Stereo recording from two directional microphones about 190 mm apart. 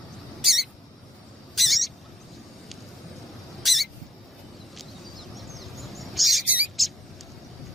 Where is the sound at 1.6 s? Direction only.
Centre (ahead or behind).